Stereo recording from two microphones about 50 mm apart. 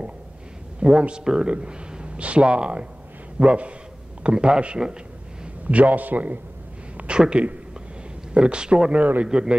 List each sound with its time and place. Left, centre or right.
0.7 s a man's voice: right
7.0 s speech: centre